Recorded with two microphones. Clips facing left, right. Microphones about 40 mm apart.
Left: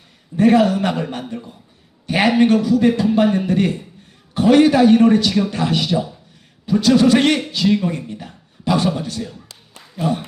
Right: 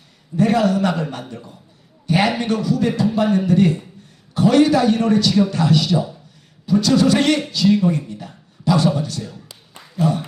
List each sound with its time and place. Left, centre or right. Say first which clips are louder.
0.3 s a man's voice: left 3 dB; left
2.0 s a sound: left 1 dB; left
2.4 s a man's voice: left 6 dB; left
7.7 s speech: right 2 dB; centre
8.0 s a man's voice: left 1 dB; left
9.5 s a sound: right 1 dB; centre
9.9 s speech: right 1 dB; centre